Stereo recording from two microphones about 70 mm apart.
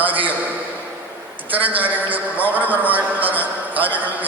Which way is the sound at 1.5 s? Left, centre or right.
Right.